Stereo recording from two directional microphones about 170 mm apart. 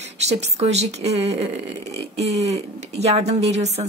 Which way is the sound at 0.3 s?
40° right (ahead or behind).